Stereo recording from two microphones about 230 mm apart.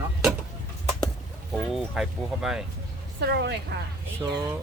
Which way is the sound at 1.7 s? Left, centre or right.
Centre.